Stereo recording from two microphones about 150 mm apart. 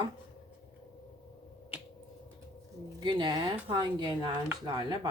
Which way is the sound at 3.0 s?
30° right (ahead or behind).